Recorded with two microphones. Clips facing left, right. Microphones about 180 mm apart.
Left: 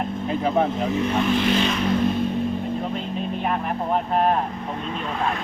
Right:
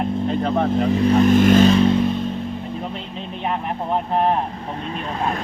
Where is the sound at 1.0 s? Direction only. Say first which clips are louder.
Right 8 dB; 45° right (ahead or behind).